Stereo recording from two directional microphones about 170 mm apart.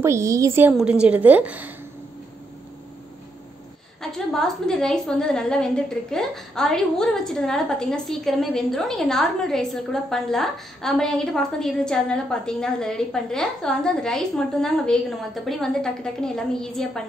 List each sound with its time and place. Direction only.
0.0 s a woman's voice: 15° right (ahead or behind)
4.0 s a woman's voice: centre (ahead or behind)